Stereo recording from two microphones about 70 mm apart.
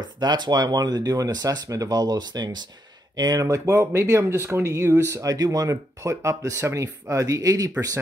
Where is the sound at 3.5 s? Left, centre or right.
Right.